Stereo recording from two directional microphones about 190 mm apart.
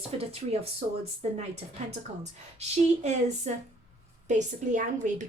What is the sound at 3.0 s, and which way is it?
A woman's voice, 35° right (ahead or behind).